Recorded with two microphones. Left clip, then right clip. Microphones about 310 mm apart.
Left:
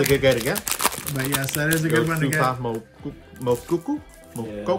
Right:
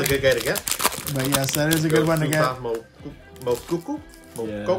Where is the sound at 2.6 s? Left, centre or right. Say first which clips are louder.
Right 1 dB; left.